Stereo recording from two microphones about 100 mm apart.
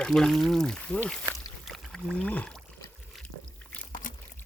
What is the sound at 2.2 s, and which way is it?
Speech, 10° left (ahead or behind).